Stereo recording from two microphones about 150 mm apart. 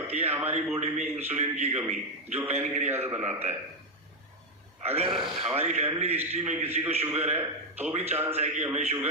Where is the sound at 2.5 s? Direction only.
50° right (ahead or behind).